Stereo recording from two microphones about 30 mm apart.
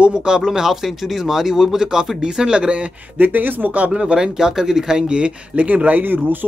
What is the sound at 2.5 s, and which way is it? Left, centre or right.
Speech, right.